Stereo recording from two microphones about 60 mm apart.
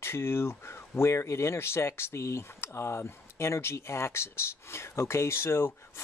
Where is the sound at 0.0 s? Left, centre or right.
Left.